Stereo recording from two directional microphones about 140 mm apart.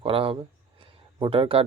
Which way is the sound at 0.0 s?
40° right (ahead or behind).